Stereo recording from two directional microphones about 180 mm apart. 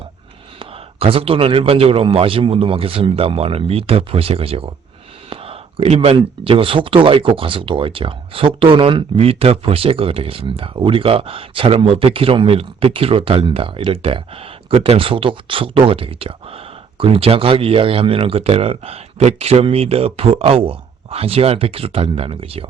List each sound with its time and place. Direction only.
0.6 s speech: 30° right (ahead or behind)